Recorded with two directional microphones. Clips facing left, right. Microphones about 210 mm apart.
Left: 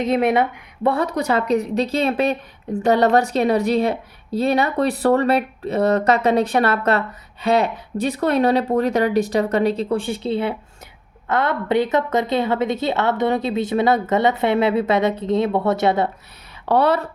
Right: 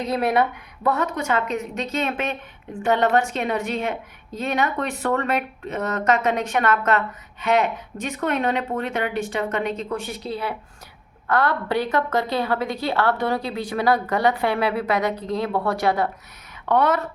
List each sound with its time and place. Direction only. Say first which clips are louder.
0.0 s a woman's voice: left 3 dB; 25° left (ahead or behind)